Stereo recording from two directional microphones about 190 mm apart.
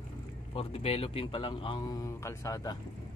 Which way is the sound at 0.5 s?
30° left (ahead or behind).